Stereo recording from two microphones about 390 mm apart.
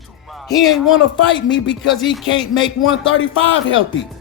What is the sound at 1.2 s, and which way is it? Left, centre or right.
Speech, left.